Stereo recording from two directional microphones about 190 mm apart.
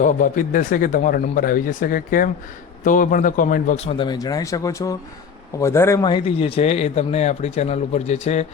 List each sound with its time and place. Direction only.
0.0 s speech: 45° left (ahead or behind)
3.8 s a man's voice: 25° left (ahead or behind)